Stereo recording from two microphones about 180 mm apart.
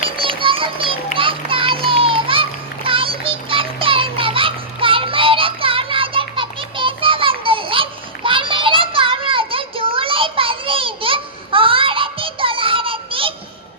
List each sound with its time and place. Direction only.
0.0 s children playing: 30° right (ahead or behind)